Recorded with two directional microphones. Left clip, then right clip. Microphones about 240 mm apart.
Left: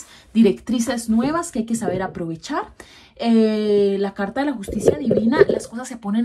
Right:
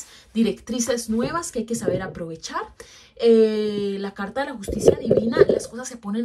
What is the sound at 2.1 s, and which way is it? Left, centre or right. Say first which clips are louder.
Speech: left 4 dB; centre.